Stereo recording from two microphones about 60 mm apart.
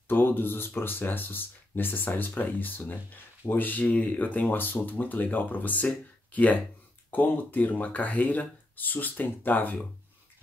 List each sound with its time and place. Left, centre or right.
0.1 s speech: left